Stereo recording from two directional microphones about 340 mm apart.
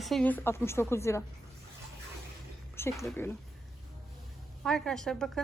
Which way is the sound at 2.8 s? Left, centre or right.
Centre.